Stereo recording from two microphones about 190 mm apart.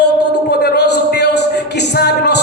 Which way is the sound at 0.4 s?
60° left (ahead or behind).